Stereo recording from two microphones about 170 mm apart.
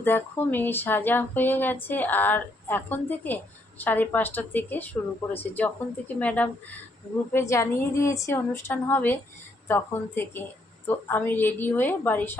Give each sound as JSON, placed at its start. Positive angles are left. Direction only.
{"t": 0.0, "sound": "speech", "side_deg": 10}